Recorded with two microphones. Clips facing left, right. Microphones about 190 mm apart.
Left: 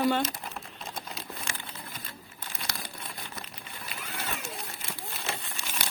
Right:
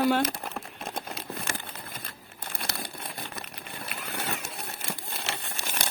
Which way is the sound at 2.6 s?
60° right (ahead or behind).